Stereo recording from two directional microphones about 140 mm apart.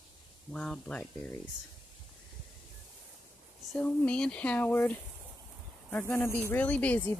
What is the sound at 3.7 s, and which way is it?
Speech, 10° left (ahead or behind).